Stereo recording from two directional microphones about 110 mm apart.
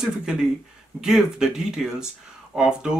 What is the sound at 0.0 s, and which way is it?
Speech, 5° right (ahead or behind).